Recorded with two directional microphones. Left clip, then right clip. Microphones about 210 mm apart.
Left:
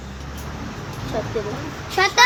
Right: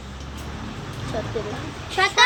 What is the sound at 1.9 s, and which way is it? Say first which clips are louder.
Speech: left 2 dB; 55° left (ahead or behind).